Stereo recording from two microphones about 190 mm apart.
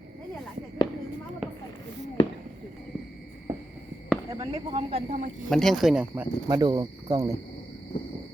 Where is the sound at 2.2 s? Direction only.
30° left (ahead or behind).